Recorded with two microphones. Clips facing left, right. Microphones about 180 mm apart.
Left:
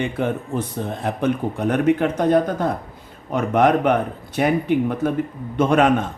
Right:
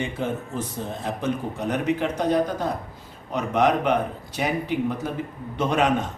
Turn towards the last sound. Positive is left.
turn(degrees=55)  # may be behind; listen again after turning